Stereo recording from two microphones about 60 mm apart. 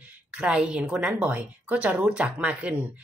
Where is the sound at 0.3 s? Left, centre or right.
Centre.